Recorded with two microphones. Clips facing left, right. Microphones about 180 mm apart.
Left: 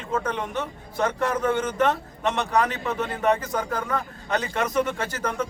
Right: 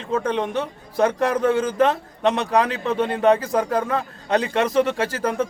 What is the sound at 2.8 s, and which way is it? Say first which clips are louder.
Speech: right 6 dB; 30° right (ahead or behind).